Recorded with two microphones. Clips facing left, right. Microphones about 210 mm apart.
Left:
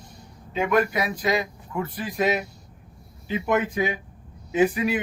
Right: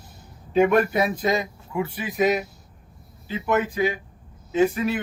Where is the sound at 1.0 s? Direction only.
20° right (ahead or behind).